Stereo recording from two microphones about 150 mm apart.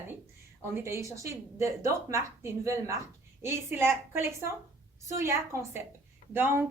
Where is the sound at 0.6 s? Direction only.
20° right (ahead or behind).